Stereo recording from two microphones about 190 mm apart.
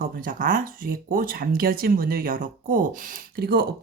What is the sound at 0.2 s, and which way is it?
Speech, 45° right (ahead or behind).